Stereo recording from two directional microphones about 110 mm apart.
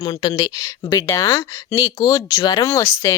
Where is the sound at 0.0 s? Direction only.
45° left (ahead or behind).